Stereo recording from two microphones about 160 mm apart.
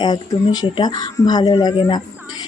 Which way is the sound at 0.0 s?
25° left (ahead or behind).